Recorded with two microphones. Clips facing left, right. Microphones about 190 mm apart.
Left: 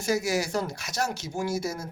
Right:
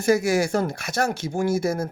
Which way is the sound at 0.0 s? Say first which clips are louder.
Right 7 dB; 55° right (ahead or behind).